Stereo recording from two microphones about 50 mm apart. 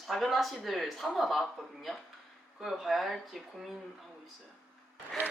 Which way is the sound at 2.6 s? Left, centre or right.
Centre.